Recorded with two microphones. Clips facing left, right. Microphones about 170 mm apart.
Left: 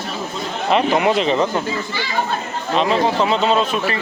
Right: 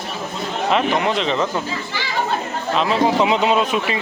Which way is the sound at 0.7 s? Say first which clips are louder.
Left 3 dB; 5° left (ahead or behind).